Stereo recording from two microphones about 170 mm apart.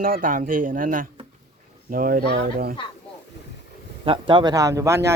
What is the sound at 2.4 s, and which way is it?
Speech, 70° right (ahead or behind).